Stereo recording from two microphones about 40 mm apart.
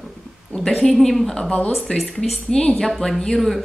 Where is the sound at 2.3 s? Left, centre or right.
Centre.